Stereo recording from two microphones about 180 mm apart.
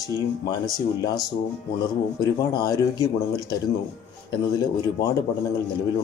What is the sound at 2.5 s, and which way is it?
Speech, 20° left (ahead or behind).